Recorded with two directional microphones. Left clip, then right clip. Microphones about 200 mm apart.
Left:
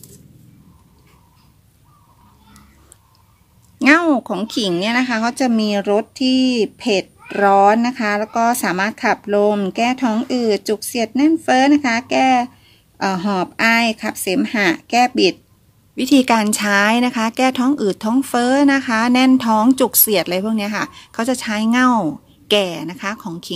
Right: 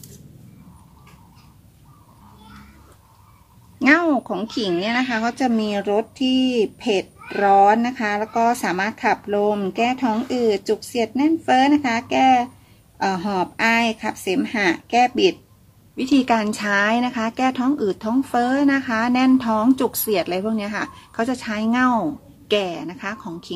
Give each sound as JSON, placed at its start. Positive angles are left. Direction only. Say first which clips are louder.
{"t": 3.8, "sound": "speech", "louder": "left 3 dB", "side_deg": 55}
{"t": 16.0, "sound": "speech", "louder": "left 4 dB", "side_deg": 50}